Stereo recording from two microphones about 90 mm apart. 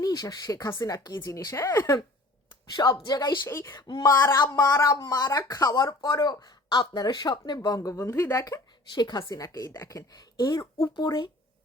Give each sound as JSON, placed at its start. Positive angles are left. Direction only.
{"t": 0.0, "sound": "speech", "side_deg": 45}
{"t": 3.1, "sound": "speech", "side_deg": 50}
{"t": 3.4, "sound": "speech", "side_deg": 30}
{"t": 3.7, "sound": "speech", "side_deg": 55}
{"t": 4.2, "sound": "speech", "side_deg": 30}
{"t": 7.8, "sound": "speech", "side_deg": 35}
{"t": 9.0, "sound": "speech", "side_deg": 45}
{"t": 10.9, "sound": "speech", "side_deg": 55}